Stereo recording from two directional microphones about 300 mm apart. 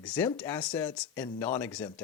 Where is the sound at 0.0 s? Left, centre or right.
Centre.